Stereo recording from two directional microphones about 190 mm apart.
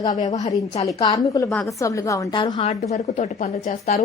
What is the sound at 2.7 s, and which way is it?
Speech, 35° left (ahead or behind).